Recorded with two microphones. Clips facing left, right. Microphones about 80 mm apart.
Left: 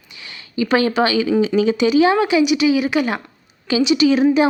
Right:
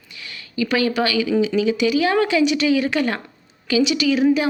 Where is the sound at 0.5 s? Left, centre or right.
Left.